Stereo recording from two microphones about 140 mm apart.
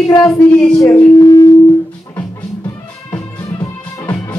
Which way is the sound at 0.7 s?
20° left (ahead or behind).